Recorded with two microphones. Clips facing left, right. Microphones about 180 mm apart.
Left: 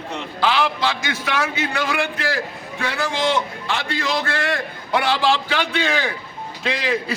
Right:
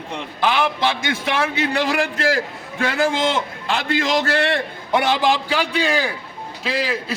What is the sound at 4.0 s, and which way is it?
Speech, 90° right.